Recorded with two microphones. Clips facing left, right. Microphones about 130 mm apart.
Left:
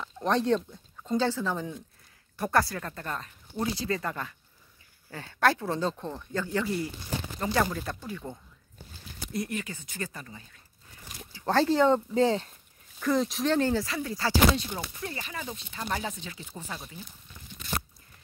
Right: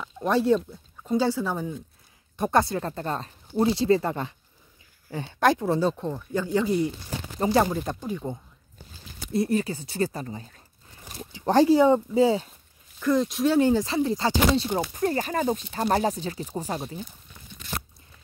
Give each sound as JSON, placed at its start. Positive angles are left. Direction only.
{"t": 0.0, "sound": "speech", "side_deg": -5}
{"t": 2.3, "sound": "speech", "side_deg": -20}
{"t": 9.3, "sound": "speech", "side_deg": -30}
{"t": 11.3, "sound": "speech", "side_deg": -15}
{"t": 13.6, "sound": "speech", "side_deg": -15}
{"t": 13.8, "sound": "speech", "side_deg": -25}
{"t": 14.8, "sound": "speech", "side_deg": -45}